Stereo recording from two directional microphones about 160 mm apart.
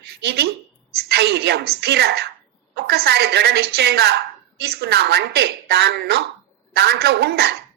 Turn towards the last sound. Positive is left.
turn(degrees=-90)